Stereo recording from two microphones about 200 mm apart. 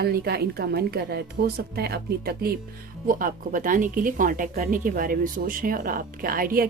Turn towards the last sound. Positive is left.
turn(degrees=-45)  # may be behind; listen again after turning